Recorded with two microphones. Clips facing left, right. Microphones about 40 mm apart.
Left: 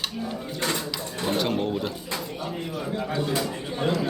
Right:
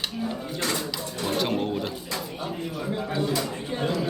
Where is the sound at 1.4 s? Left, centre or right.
Centre.